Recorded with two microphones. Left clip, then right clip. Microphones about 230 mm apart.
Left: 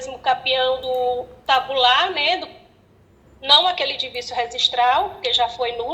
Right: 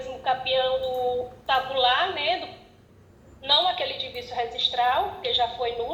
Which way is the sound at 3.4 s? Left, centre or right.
Left.